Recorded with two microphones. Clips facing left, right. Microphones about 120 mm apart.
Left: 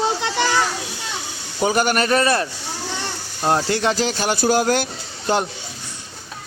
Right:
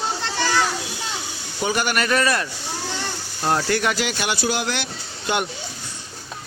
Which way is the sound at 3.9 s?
40° left (ahead or behind).